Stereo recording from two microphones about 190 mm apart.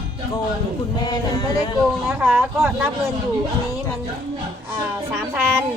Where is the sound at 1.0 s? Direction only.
20° left (ahead or behind).